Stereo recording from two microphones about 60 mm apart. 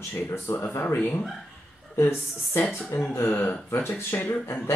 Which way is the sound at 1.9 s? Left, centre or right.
Left.